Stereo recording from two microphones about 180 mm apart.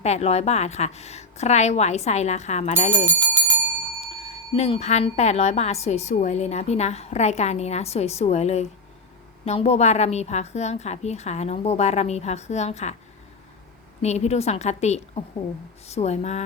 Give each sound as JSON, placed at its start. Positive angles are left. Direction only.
{"t": 0.0, "sound": "a woman's voice", "side_deg": 35}
{"t": 3.1, "sound": "bell", "side_deg": -10}
{"t": 4.5, "sound": "a woman's voice", "side_deg": 35}
{"t": 14.0, "sound": "a woman's voice", "side_deg": 35}